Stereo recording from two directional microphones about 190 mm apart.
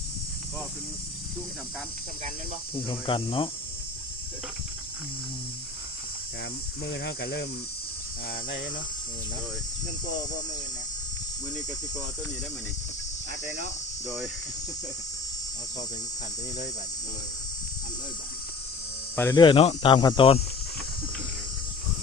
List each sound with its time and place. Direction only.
2.7 s speech: 25° left (ahead or behind)
6.8 s cricket: 65° left (ahead or behind)
19.1 s speech: 10° left (ahead or behind)
19.4 s speech: 25° left (ahead or behind)